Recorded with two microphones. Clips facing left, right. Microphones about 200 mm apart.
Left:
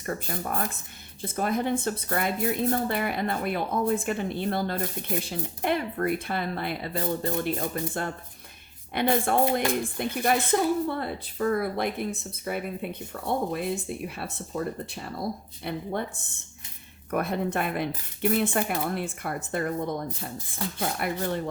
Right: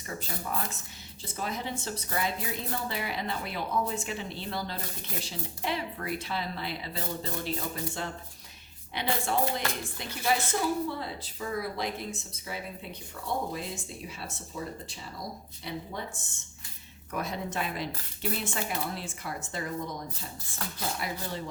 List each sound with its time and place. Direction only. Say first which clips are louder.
0.0 s a woman's voice: left 6 dB; 55° left (ahead or behind)